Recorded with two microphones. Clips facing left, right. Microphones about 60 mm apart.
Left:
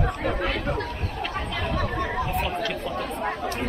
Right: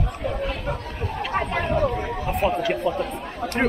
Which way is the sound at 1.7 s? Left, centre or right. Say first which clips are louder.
Right 2 dB; left.